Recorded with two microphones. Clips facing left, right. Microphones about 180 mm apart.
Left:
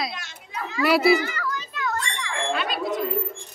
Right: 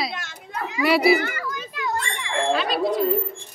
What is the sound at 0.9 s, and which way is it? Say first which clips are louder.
Speech: right 1 dB; centre (ahead or behind).